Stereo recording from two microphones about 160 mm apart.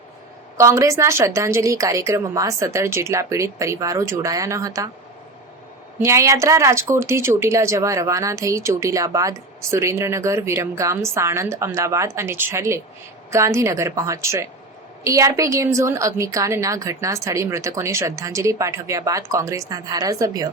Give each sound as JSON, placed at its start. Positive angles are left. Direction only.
{"t": 0.5, "sound": "a woman's voice", "side_deg": -20}
{"t": 6.0, "sound": "a woman's voice", "side_deg": -20}